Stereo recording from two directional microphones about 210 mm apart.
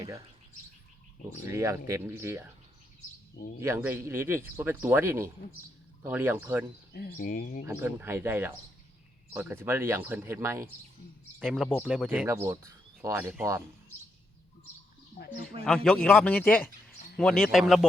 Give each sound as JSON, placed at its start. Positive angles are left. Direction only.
{"t": 1.5, "sound": "speech", "side_deg": -15}
{"t": 3.6, "sound": "speech", "side_deg": -10}
{"t": 6.9, "sound": "speech", "side_deg": 45}
{"t": 7.7, "sound": "speech", "side_deg": -10}
{"t": 11.3, "sound": "speech", "side_deg": 0}
{"t": 15.6, "sound": "speech", "side_deg": 5}